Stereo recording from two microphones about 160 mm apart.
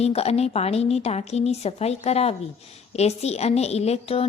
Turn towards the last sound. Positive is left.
turn(degrees=40)  # may be behind; listen again after turning